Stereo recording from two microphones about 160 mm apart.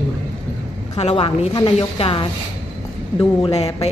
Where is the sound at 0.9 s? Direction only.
40° left (ahead or behind).